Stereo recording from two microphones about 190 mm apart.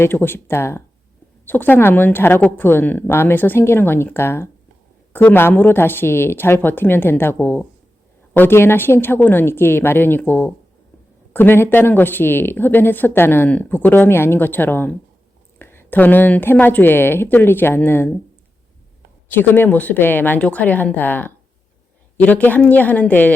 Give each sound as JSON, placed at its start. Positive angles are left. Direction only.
{"t": 0.0, "sound": "speech", "side_deg": 10}
{"t": 19.3, "sound": "speech", "side_deg": 10}